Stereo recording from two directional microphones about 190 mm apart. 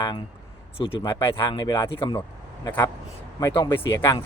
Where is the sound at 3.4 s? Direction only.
20° left (ahead or behind).